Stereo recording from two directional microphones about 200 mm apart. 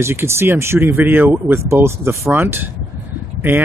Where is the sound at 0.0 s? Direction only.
10° right (ahead or behind).